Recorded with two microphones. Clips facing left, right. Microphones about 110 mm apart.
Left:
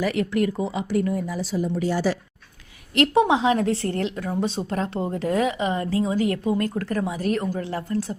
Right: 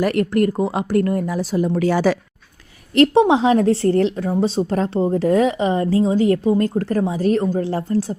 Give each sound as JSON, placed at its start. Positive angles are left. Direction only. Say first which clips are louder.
{"t": 0.0, "sound": "speech", "louder": "right 5 dB", "side_deg": -55}
{"t": 1.6, "sound": "speech", "louder": "right 6 dB", "side_deg": -75}
{"t": 2.9, "sound": "a woman's voice", "louder": "right 5 dB", "side_deg": -35}